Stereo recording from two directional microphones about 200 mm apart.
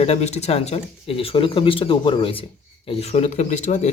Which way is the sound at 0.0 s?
35° left (ahead or behind).